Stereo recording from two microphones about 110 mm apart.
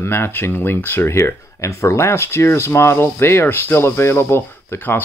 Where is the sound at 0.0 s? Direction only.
20° left (ahead or behind).